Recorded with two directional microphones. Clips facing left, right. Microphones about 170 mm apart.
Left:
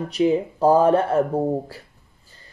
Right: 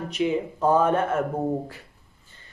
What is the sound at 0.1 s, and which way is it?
Speech, 35° left (ahead or behind).